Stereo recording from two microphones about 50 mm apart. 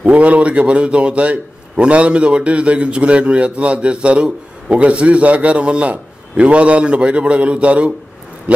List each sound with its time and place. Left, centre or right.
0.0 s a man's voice: right